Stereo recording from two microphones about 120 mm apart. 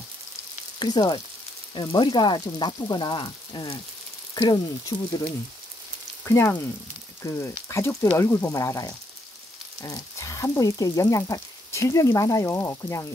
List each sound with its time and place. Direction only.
0.7 s frying: 35° left (ahead or behind)
4.4 s frying: 30° left (ahead or behind)
6.2 s frying: 25° left (ahead or behind)
7.6 s speech: 20° left (ahead or behind)
8.0 s frying: 25° left (ahead or behind)
9.8 s speech: 30° left (ahead or behind)